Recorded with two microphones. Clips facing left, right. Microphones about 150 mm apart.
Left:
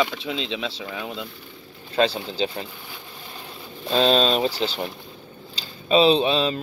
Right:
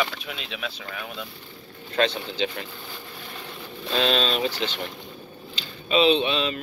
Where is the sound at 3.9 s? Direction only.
35° left (ahead or behind).